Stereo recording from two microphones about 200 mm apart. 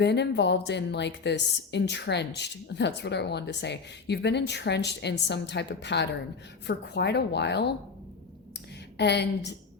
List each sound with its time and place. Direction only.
0.0 s a woman's voice: 60° left (ahead or behind)
9.0 s a woman's voice: 55° left (ahead or behind)